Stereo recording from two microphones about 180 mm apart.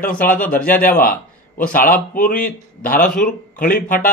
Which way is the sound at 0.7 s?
50° left (ahead or behind).